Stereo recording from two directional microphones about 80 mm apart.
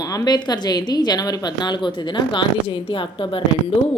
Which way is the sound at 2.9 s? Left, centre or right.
Left.